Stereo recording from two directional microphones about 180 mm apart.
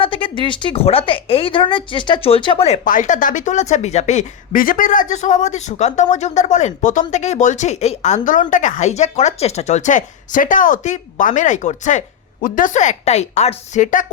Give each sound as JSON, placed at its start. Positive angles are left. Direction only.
{"t": 0.0, "sound": "a woman's voice", "side_deg": 30}